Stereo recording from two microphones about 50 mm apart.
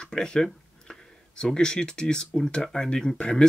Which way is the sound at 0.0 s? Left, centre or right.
Centre.